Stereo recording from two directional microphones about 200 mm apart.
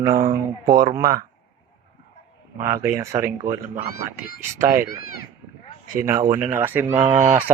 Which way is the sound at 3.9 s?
50° left (ahead or behind).